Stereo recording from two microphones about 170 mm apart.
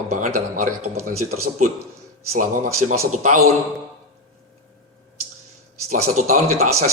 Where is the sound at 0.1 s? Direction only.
50° right (ahead or behind).